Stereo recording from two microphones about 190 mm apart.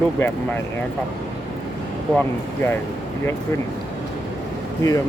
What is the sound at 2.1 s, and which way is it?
Speech, 10° left (ahead or behind).